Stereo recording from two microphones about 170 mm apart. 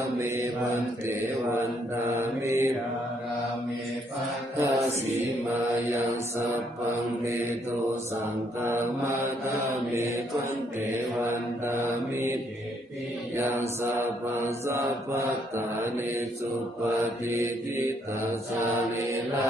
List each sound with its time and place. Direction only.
0.2 s mantra: 15° right (ahead or behind)
2.1 s mantra: 15° right (ahead or behind)
4.6 s mantra: 15° right (ahead or behind)
8.5 s mantra: 15° right (ahead or behind)
11.9 s mantra: 15° right (ahead or behind)
13.4 s mantra: 15° right (ahead or behind)
18.9 s mantra: 20° right (ahead or behind)